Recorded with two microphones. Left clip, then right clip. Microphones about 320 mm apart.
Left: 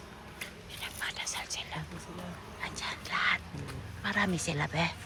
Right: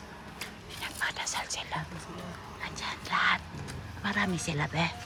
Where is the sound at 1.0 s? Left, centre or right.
Centre.